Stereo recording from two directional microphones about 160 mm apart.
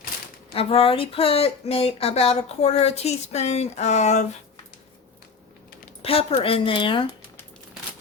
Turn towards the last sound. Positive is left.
turn(degrees=30)  # may be behind; listen again after turning